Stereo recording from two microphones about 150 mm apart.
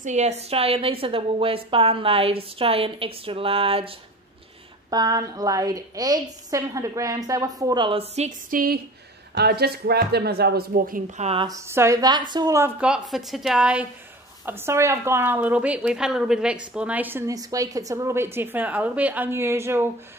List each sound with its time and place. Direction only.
0.0 s a woman's voice: 50° right (ahead or behind)
4.9 s a woman's voice: 25° right (ahead or behind)
8.5 s a woman's voice: 75° right (ahead or behind)
9.4 s speech: 90° right; by 11.0 s 70° right (ahead or behind)
11.1 s a woman's voice: 45° right (ahead or behind)
11.4 s a woman's voice: 20° right (ahead or behind)
12.8 s a woman's voice: 5° right (ahead or behind)
17.3 s a woman's voice: 25° right (ahead or behind)